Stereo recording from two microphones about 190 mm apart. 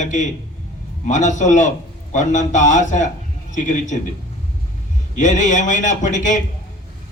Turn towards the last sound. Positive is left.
turn(degrees=40)  # may be behind; listen again after turning